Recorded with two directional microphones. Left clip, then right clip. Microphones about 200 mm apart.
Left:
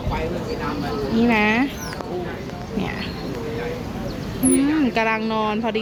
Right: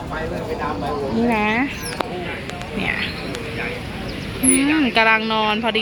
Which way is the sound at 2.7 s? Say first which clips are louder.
Right 6 dB; 15° left (ahead or behind).